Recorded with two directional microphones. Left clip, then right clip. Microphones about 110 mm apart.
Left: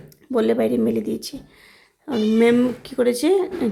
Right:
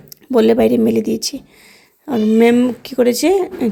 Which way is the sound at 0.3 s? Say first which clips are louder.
Right 7 dB; 35° right (ahead or behind).